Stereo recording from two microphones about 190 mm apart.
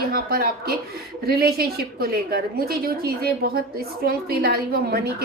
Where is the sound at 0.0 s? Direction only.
55° right (ahead or behind).